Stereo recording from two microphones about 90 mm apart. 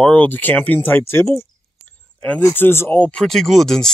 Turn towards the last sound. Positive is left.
turn(degrees=5)  # may be behind; listen again after turning